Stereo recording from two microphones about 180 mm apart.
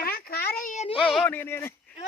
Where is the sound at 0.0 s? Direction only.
55° left (ahead or behind).